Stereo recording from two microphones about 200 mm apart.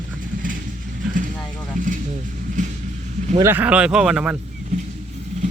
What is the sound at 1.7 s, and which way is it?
Speech, 40° right (ahead or behind).